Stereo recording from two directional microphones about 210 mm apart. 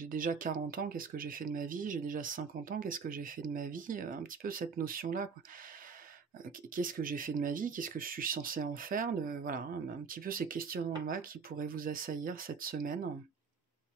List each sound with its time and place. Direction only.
0.0 s speech: 40° right (ahead or behind)
6.7 s speech: 40° right (ahead or behind)